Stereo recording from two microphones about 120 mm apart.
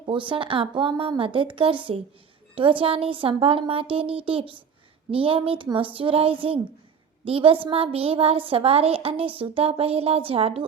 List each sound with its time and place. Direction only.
0.0 s a woman's voice: 45° right (ahead or behind)